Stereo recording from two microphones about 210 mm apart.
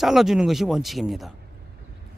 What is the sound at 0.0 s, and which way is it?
Speech, centre (ahead or behind).